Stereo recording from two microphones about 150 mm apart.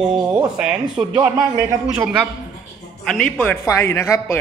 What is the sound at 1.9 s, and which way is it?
Speech, 5° right (ahead or behind).